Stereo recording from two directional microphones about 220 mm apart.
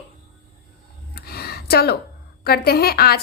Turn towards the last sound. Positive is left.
turn(degrees=45)  # may be behind; listen again after turning